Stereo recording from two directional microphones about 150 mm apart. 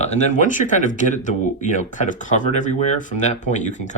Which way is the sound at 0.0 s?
50° left (ahead or behind).